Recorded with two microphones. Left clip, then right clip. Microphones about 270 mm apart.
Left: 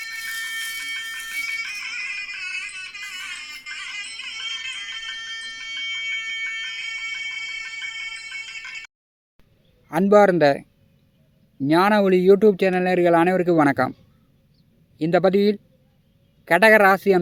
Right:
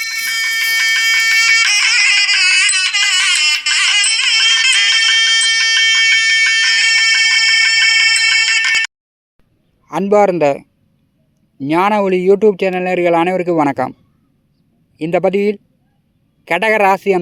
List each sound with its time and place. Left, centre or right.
0.0 s a sound: right
9.8 s speech: centre
16.4 s speech: centre